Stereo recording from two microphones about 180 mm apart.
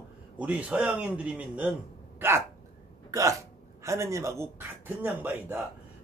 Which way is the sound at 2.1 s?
15° right (ahead or behind).